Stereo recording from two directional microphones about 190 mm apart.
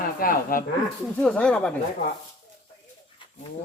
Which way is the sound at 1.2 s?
5° left (ahead or behind).